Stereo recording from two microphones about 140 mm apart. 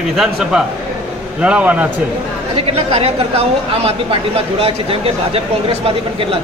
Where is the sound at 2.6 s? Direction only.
50° right (ahead or behind).